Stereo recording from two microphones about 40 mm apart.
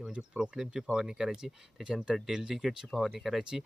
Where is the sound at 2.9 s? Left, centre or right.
Centre.